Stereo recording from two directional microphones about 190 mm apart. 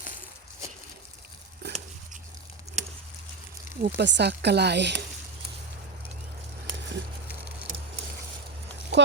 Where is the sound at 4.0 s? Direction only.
65° right (ahead or behind).